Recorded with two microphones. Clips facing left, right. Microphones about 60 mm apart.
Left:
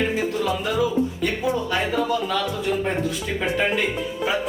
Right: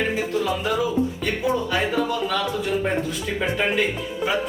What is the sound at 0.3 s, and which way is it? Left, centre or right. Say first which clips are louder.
Music: right 2 dB; centre.